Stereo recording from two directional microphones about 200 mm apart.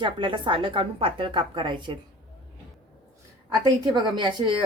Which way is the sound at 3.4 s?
20° right (ahead or behind).